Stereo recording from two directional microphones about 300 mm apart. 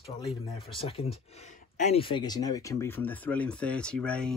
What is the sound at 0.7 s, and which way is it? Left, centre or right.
Speech, centre.